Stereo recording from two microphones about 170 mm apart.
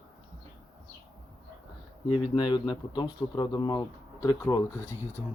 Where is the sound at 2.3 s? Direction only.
25° left (ahead or behind).